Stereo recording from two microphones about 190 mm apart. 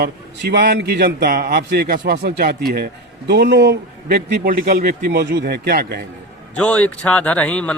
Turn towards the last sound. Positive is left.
turn(degrees=5)  # may be behind; listen again after turning